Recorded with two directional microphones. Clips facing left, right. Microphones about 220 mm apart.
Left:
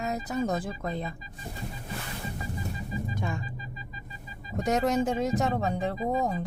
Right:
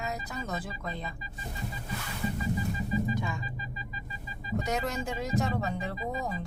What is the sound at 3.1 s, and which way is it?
Music, 50° left (ahead or behind).